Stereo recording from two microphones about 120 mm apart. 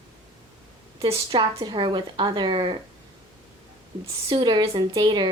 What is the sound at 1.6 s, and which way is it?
A woman's voice, 40° right (ahead or behind).